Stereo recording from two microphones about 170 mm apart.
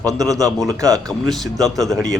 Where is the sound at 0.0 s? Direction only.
20° right (ahead or behind).